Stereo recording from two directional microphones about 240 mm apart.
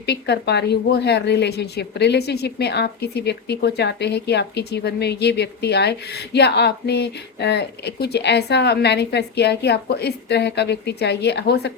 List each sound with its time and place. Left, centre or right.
0.0 s a woman's voice: left